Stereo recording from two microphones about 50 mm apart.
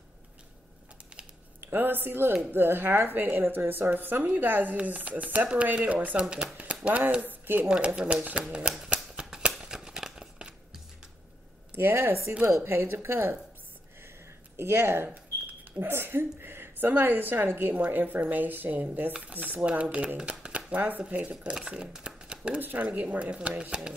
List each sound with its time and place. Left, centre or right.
1.7 s a woman's voice: right
6.5 s a sound: right
7.2 s speech: right
7.6 s speech: centre
9.1 s a sound: centre
11.7 s a woman's voice: right
14.6 s a woman's voice: right
17.7 s a woman's voice: right
21.0 s speech: right